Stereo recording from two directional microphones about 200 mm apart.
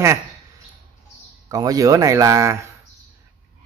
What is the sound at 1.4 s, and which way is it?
Speech, 20° right (ahead or behind).